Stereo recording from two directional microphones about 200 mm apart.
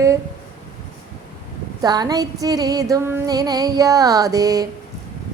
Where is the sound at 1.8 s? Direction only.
20° right (ahead or behind).